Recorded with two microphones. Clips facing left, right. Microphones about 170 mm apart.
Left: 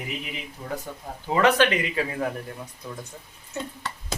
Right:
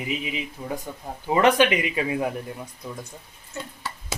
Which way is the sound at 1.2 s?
20° right (ahead or behind).